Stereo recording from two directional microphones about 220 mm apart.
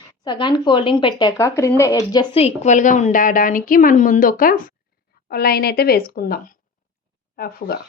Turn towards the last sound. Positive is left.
turn(degrees=40)  # may be behind; listen again after turning